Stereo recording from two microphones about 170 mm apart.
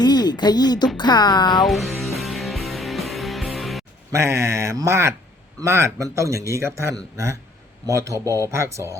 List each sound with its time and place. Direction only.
0.0 s speech: 25° left (ahead or behind)
1.6 s music: centre (ahead or behind)
4.1 s a man's voice: 15° right (ahead or behind)